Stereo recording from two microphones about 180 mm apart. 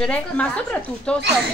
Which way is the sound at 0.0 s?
5° left (ahead or behind).